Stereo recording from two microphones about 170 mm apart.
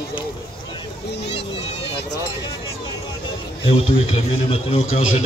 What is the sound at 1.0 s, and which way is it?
Speech, 80° left.